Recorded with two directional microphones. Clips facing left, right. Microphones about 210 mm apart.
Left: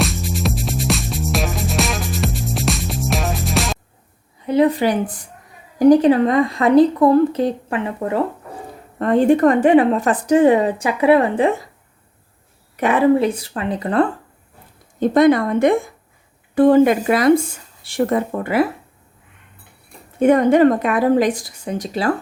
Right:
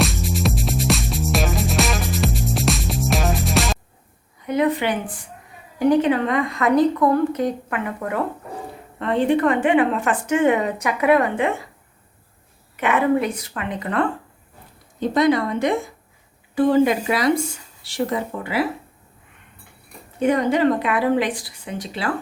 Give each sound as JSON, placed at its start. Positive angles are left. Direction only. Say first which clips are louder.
{"t": 0.0, "sound": "music", "louder": "even", "side_deg": 0}
{"t": 4.4, "sound": "a woman's voice", "louder": "left 5 dB", "side_deg": 30}
{"t": 9.0, "sound": "a woman's voice", "louder": "left 5 dB", "side_deg": 45}
{"t": 12.7, "sound": "a woman's voice", "louder": "left 4 dB", "side_deg": 35}
{"t": 15.1, "sound": "a woman's voice", "louder": "left 5 dB", "side_deg": 50}
{"t": 20.1, "sound": "a woman's voice", "louder": "left 6 dB", "side_deg": 50}